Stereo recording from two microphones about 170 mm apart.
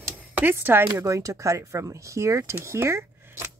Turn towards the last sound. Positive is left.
turn(degrees=-15)  # may be behind; listen again after turning